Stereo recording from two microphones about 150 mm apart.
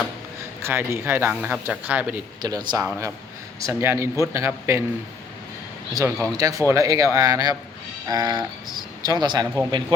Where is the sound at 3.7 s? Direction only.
15° right (ahead or behind).